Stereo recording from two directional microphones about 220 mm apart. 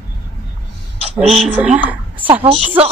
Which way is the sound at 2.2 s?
25° right (ahead or behind).